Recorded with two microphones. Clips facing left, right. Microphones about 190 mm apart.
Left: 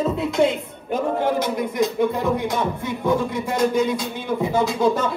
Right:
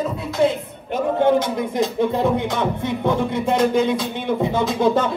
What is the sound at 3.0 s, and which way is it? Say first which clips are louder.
Music: right 1 dB; 55° right (ahead or behind).